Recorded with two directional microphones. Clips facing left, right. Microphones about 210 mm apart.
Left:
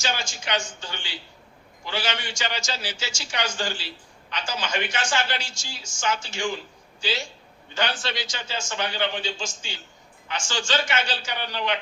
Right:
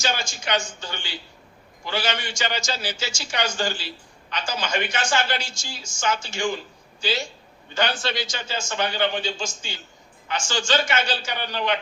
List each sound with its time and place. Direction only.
0.0 s a woman's voice: 45° right (ahead or behind)
7.8 s a woman's voice: 45° right (ahead or behind)